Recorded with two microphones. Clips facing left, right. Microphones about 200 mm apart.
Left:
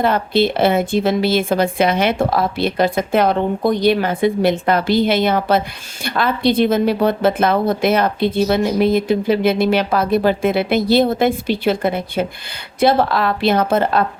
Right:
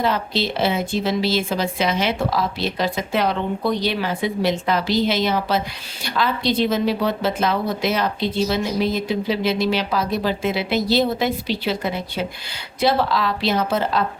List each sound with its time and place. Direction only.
0.0 s a woman's voice: 55° left (ahead or behind)